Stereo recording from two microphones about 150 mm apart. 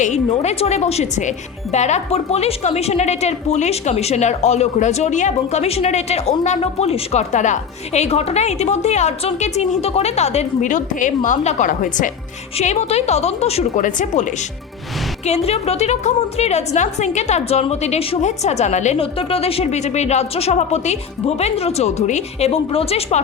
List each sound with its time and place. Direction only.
0.0 s a woman's voice: 50° left (ahead or behind)
12.5 s a woman's voice: 45° left (ahead or behind)
13.8 s speech: 55° left (ahead or behind)
15.3 s a woman's voice: 45° left (ahead or behind)